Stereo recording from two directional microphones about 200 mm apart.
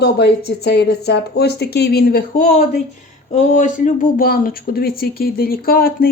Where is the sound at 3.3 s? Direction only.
35° left (ahead or behind).